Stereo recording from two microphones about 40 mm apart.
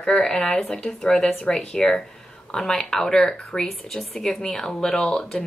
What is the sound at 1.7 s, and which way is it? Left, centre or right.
Speech, centre.